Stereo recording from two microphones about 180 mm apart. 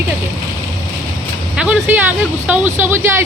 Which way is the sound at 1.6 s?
10° right (ahead or behind).